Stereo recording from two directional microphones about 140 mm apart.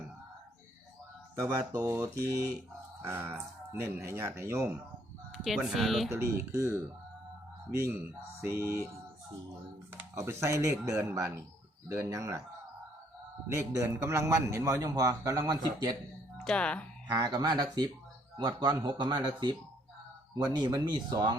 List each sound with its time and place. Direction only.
1.4 s a man's voice: 20° right (ahead or behind)
3.7 s speech: 15° right (ahead or behind)
5.4 s speech: centre (ahead or behind)
6.2 s a man's voice: 20° right (ahead or behind)
9.9 s a man's voice: 15° right (ahead or behind)
13.5 s a man's voice: 20° right (ahead or behind)
16.4 s speech: 5° left (ahead or behind)
17.1 s a man's voice: 30° right (ahead or behind)